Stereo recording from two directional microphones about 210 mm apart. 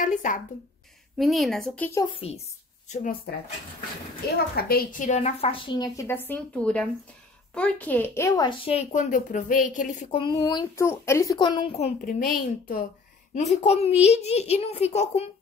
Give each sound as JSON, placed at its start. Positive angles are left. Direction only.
{"t": 0.0, "sound": "speech", "side_deg": 35}
{"t": 1.1, "sound": "speech", "side_deg": 0}
{"t": 2.0, "sound": "speech", "side_deg": 30}
{"t": 2.9, "sound": "a child's voice", "side_deg": 40}
{"t": 4.6, "sound": "speech", "side_deg": 45}
{"t": 10.2, "sound": "a child's voice", "side_deg": 20}
{"t": 13.7, "sound": "a child's voice", "side_deg": 30}